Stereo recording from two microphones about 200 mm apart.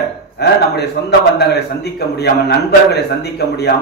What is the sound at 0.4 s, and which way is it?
Speech, 55° left (ahead or behind).